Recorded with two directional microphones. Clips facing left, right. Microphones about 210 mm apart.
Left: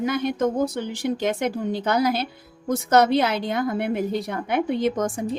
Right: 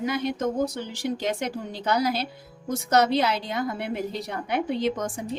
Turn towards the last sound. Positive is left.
turn(degrees=50)  # may be behind; listen again after turning